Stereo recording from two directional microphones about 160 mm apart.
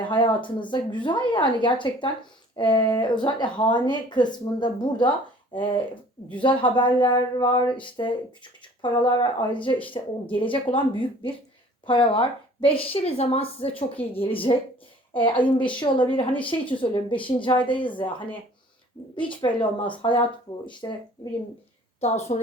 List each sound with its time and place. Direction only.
0.0 s a woman's voice: 30° left (ahead or behind)
19.3 s a woman's voice: 30° left (ahead or behind)
22.0 s a woman's voice: 45° left (ahead or behind)